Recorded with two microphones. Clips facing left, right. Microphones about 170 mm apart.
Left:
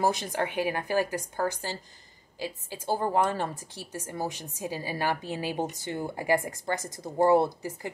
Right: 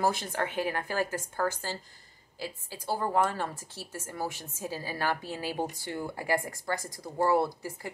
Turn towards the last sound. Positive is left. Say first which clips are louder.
# left 3 dB
turn(degrees=20)  # may be behind; listen again after turning